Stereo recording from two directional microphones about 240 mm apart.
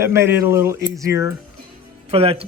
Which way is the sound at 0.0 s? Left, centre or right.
Centre.